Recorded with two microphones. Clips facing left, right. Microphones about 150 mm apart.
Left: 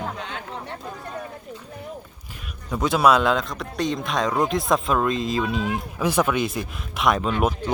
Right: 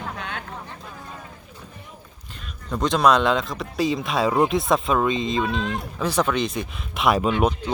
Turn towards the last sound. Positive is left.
turn(degrees=-5)  # may be behind; listen again after turning